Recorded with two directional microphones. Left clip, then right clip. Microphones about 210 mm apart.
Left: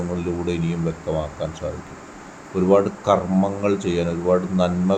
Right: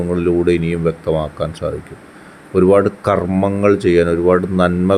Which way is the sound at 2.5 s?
30° right (ahead or behind).